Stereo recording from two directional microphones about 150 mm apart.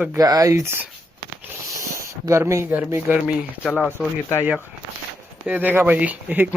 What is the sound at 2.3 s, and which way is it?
Speech, 20° right (ahead or behind).